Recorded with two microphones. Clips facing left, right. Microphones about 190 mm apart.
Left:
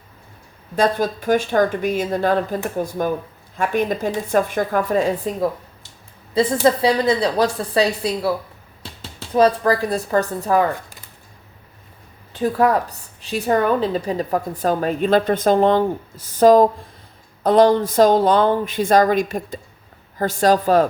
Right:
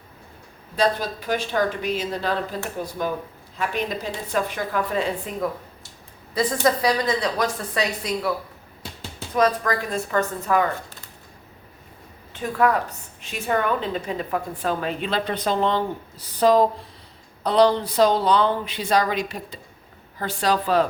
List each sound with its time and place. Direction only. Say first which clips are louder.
0.8 s speech: left 4 dB; 50° left (ahead or behind)
6.3 s a woman's voice: left 5 dB; 30° left (ahead or behind)
9.3 s a woman's voice: left 5 dB; 30° left (ahead or behind)
12.3 s a woman's voice: left 4 dB; 35° left (ahead or behind)